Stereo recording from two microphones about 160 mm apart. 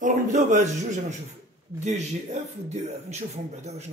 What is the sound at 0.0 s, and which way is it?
A man's voice, 50° right (ahead or behind).